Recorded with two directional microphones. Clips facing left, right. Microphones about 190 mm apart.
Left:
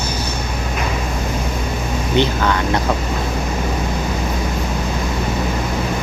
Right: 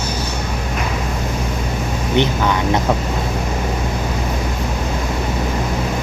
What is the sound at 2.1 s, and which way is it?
Speech, 20° right (ahead or behind).